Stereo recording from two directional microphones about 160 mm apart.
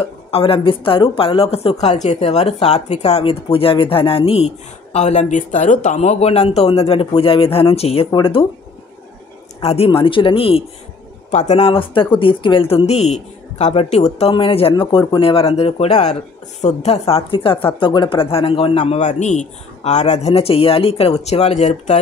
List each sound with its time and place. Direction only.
0.0 s a woman's voice: 35° left (ahead or behind)
9.6 s a woman's voice: 40° left (ahead or behind)
11.2 s a woman's voice: 45° left (ahead or behind)